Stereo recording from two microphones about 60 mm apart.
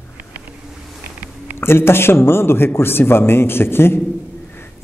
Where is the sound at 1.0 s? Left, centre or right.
Right.